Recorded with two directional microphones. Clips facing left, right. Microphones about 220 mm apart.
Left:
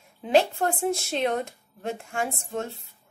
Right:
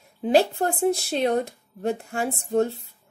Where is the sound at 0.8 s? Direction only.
35° right (ahead or behind).